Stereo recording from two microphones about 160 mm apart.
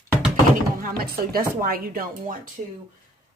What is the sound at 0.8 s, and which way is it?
Speech, 65° right (ahead or behind).